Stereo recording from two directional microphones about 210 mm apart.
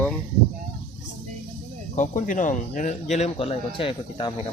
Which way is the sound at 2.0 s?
35° left (ahead or behind).